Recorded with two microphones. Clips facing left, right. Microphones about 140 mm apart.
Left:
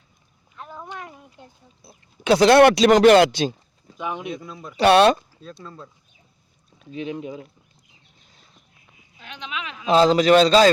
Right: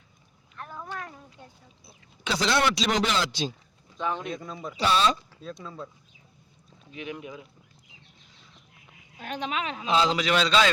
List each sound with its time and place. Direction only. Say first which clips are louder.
0.5 s a sound: left 1 dB; 15° left (ahead or behind)
2.2 s speech: left 12 dB; 55° left (ahead or behind)
3.9 s speech: left 1 dB; 15° left (ahead or behind)
4.4 s speech: even; centre (ahead or behind)
4.8 s speech: left 9 dB; 65° left (ahead or behind)
5.6 s speech: even; centre (ahead or behind)
6.9 s speech: left 7 dB; 30° left (ahead or behind)
9.1 s speech: right 4 dB; 45° right (ahead or behind)
9.8 s a man's voice: left 9 dB; 40° left (ahead or behind)